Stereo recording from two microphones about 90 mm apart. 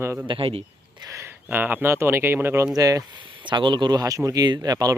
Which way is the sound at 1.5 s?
20° right (ahead or behind).